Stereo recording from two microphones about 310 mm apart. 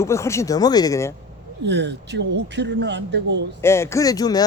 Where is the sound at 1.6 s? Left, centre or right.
Right.